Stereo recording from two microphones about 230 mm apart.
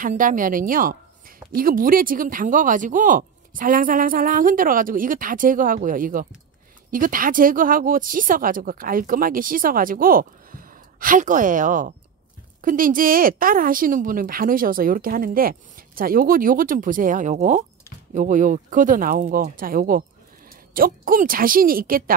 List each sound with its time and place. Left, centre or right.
0.0 s speech: right